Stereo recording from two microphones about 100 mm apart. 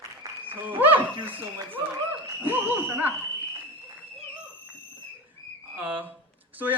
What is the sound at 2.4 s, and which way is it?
Speech, 20° right (ahead or behind).